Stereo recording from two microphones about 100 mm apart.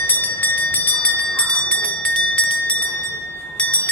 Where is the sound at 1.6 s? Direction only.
10° left (ahead or behind).